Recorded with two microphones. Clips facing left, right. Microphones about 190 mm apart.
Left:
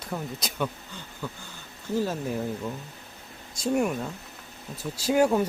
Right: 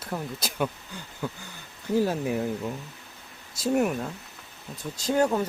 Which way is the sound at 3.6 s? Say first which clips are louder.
Right 1 dB; 5° right (ahead or behind).